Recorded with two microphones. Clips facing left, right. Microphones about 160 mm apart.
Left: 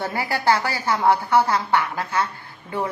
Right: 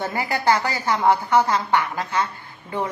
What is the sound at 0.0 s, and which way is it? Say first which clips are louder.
A woman's voice: even; 15° right (ahead or behind).